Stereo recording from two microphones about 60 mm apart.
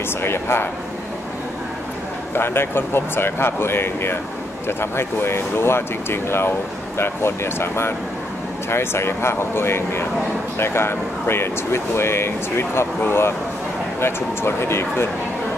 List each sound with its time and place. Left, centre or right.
0.2 s speech: left
2.3 s speech: left